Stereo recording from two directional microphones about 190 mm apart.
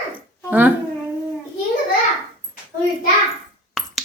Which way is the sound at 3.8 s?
Centre (ahead or behind).